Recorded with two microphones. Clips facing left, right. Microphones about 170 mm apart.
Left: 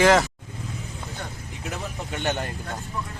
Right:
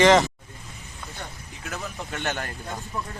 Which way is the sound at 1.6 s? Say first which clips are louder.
Left 1 dB; 15° left (ahead or behind).